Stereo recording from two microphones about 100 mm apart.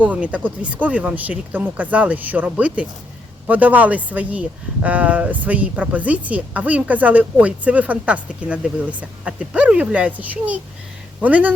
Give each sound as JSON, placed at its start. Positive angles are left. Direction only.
{"t": 0.0, "sound": "speech", "side_deg": -15}